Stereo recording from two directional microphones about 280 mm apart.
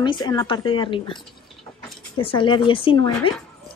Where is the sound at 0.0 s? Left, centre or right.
Centre.